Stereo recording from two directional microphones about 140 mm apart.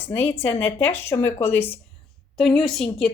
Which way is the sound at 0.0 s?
15° left (ahead or behind).